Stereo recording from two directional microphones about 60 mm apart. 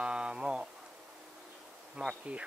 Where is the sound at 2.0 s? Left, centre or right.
Centre.